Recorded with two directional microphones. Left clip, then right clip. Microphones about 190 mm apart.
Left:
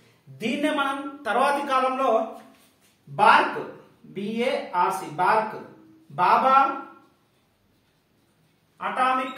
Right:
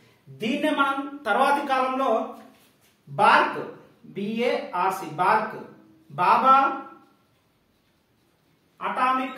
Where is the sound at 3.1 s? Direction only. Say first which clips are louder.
Left 1 dB; 20° right (ahead or behind).